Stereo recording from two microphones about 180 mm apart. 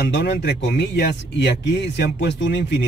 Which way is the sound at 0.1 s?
70° left (ahead or behind).